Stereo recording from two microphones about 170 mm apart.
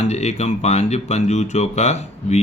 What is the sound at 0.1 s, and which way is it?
Speech, 40° left (ahead or behind).